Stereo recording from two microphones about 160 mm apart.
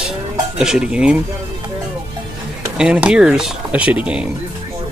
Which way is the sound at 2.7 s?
5° right (ahead or behind).